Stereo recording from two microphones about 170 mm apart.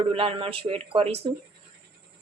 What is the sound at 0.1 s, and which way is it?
Speech, 35° right (ahead or behind).